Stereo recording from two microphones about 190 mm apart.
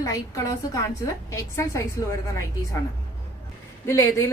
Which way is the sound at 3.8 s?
15° left (ahead or behind).